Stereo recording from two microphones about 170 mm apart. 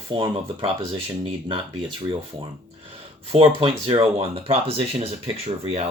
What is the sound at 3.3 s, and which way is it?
Speech, 30° right (ahead or behind).